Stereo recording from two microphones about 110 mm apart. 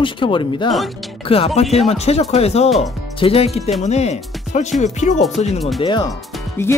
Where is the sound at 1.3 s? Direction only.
65° left (ahead or behind).